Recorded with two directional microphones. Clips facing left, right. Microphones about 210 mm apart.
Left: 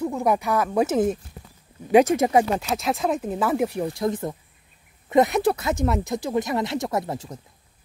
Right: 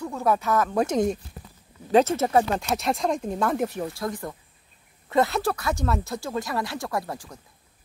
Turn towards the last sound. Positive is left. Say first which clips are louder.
# left 4 dB
turn(degrees=20)  # may be behind; listen again after turning